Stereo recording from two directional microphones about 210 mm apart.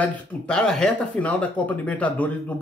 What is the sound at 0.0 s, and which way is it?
Speech, 5° left (ahead or behind).